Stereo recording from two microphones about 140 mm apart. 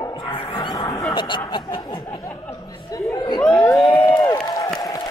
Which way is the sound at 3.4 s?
10° left (ahead or behind).